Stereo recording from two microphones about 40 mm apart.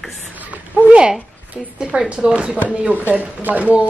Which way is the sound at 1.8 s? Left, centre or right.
Right.